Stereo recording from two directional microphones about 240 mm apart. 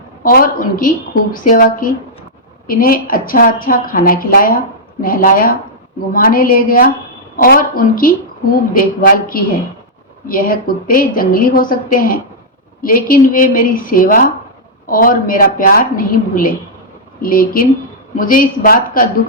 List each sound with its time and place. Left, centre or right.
0.2 s a woman's voice: left